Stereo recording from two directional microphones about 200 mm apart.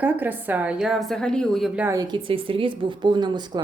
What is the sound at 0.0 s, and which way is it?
A woman's voice, 10° right (ahead or behind).